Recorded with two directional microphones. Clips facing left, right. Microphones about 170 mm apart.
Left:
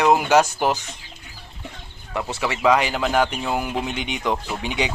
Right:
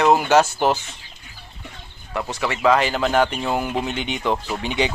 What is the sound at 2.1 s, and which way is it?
Speech, 10° left (ahead or behind).